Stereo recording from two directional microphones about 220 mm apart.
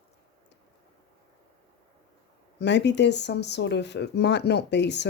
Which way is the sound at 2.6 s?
50° left (ahead or behind).